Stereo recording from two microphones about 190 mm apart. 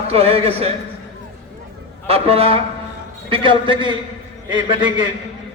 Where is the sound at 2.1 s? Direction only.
30° right (ahead or behind).